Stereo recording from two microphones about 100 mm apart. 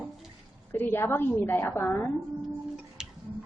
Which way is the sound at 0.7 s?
20° left (ahead or behind).